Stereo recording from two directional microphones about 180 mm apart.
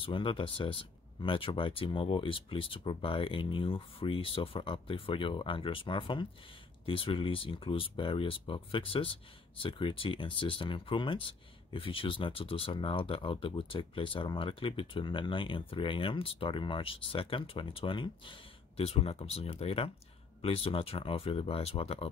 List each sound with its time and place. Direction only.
0.0 s speech: 30° left (ahead or behind)